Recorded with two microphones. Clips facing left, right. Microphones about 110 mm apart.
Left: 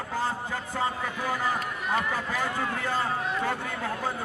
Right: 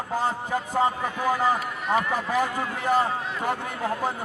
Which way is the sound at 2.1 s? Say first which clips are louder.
Right 5 dB; 15° right (ahead or behind).